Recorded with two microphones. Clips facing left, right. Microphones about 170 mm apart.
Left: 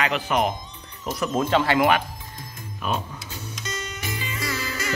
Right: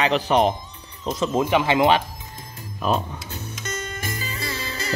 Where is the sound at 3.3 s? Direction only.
55° right (ahead or behind); by 4.9 s 30° right (ahead or behind).